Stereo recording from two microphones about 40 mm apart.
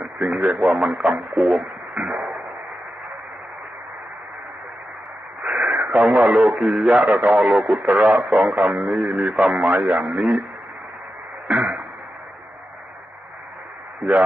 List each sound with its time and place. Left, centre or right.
0.0 s speech: right
5.4 s speech: right
9.7 s speech: right
11.4 s throat clearing: right